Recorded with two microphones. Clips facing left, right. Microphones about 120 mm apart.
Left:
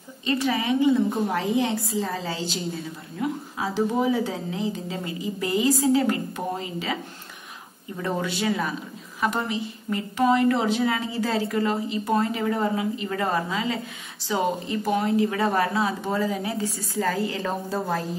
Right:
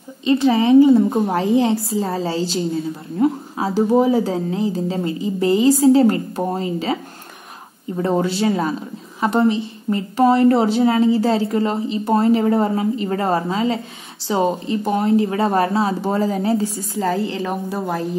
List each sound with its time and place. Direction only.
0.2 s a woman's voice: 25° right (ahead or behind)
17.4 s a woman's voice: 15° right (ahead or behind)